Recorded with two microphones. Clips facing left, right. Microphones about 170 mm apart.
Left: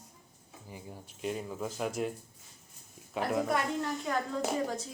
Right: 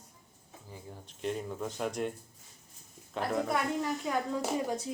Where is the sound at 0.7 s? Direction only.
10° left (ahead or behind).